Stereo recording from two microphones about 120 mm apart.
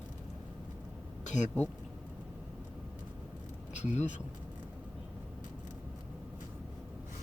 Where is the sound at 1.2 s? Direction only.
75° left (ahead or behind).